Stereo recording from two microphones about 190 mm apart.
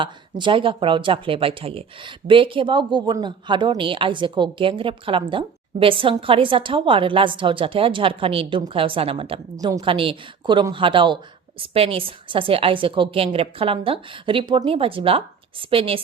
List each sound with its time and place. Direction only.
0.0 s speech: 25° right (ahead or behind)